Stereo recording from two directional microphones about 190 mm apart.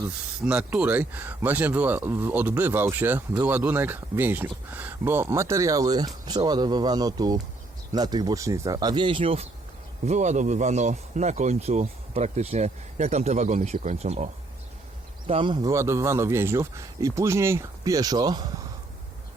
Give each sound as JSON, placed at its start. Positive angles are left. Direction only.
{"t": 0.4, "sound": "speech", "side_deg": -5}
{"t": 15.3, "sound": "speech", "side_deg": -25}